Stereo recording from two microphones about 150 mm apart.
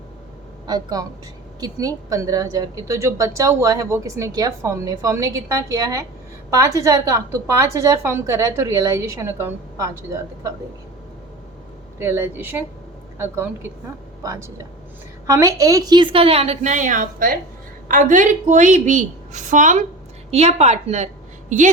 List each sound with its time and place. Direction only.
0.7 s a woman's voice: 25° right (ahead or behind)
11.9 s a woman's voice: 15° right (ahead or behind); by 19.8 s 55° right (ahead or behind)
20.3 s a woman's voice: 45° right (ahead or behind)